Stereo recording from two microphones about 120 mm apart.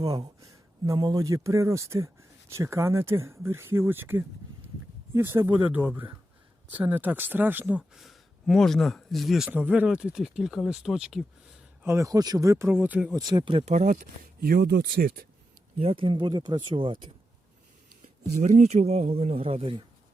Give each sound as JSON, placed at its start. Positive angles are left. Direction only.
{"t": 0.4, "sound": "speech", "side_deg": -30}
{"t": 9.5, "sound": "speech", "side_deg": -10}
{"t": 11.8, "sound": "speech", "side_deg": -25}
{"t": 13.1, "sound": "speech", "side_deg": -35}
{"t": 13.7, "sound": "speech", "side_deg": -85}
{"t": 15.8, "sound": "speech", "side_deg": -50}
{"t": 18.4, "sound": "speech", "side_deg": -75}